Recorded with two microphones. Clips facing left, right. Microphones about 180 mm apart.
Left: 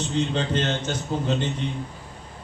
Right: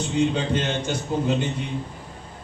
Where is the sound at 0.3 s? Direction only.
10° right (ahead or behind).